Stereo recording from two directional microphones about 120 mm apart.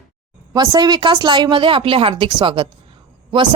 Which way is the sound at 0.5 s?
35° right (ahead or behind).